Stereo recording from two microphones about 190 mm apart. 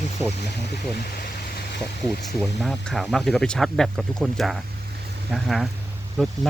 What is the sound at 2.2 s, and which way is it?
Speech, centre (ahead or behind).